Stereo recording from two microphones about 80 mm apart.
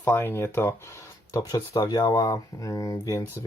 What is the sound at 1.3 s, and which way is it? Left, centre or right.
Speech, left.